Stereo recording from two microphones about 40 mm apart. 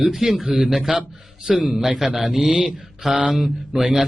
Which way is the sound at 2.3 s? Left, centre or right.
Centre.